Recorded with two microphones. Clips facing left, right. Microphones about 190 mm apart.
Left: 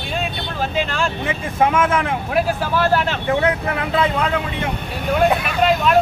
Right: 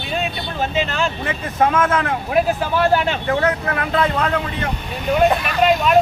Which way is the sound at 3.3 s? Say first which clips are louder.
Left 2 dB; 15° left (ahead or behind).